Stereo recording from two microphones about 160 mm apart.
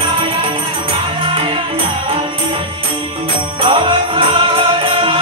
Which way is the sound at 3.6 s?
30° right (ahead or behind).